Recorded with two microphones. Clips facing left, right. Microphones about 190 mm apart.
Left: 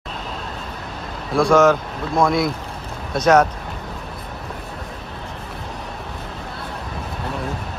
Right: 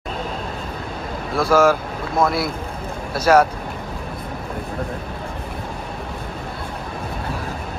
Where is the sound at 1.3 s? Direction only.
5° right (ahead or behind).